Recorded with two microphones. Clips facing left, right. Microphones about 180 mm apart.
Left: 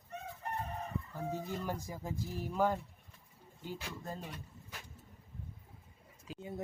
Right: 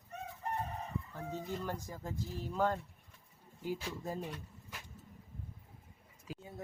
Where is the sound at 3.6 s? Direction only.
10° right (ahead or behind).